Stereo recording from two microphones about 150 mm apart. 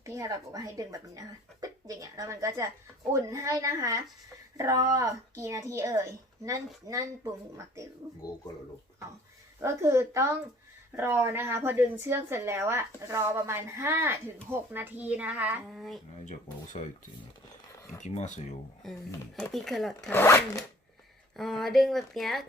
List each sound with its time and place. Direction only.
0.0 s a woman's voice: 20° right (ahead or behind)
9.6 s a woman's voice: 20° right (ahead or behind)
16.7 s dishes: 45° left (ahead or behind)
18.0 s dishes: 55° left (ahead or behind)
18.8 s speech: centre (ahead or behind)
20.1 s speech: 20° left (ahead or behind)
21.3 s speech: centre (ahead or behind)